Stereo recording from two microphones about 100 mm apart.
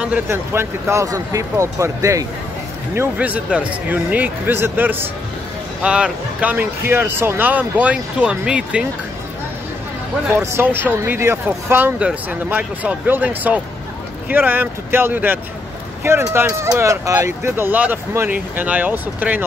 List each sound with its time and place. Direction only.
0.3 s speech: 25° right (ahead or behind)
3.2 s speech: 15° right (ahead or behind)
5.8 s speech: 10° right (ahead or behind)
10.3 s speech: 25° right (ahead or behind)